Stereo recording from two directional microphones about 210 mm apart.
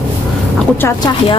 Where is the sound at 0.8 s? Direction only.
20° left (ahead or behind).